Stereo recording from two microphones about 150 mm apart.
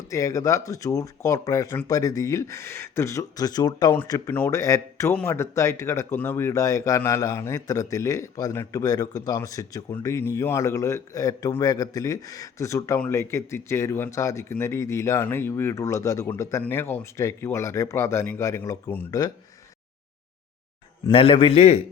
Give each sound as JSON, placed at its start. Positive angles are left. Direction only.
{"t": 0.1, "sound": "speech", "side_deg": 20}
{"t": 21.1, "sound": "a man's voice", "side_deg": 40}